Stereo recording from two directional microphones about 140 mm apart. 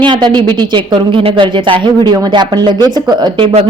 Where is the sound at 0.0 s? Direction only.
35° right (ahead or behind).